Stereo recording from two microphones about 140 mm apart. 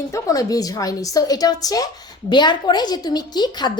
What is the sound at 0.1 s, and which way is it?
A woman's voice, 25° left (ahead or behind).